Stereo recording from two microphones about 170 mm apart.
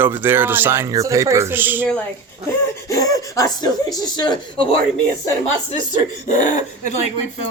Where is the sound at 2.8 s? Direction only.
20° left (ahead or behind).